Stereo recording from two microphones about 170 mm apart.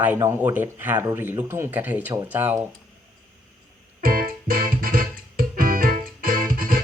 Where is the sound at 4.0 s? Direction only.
55° right (ahead or behind).